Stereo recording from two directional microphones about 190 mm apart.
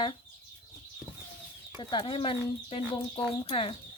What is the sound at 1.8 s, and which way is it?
Speech, 25° left (ahead or behind).